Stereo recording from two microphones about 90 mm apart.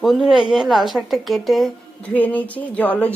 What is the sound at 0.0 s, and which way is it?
Speech, 5° right (ahead or behind).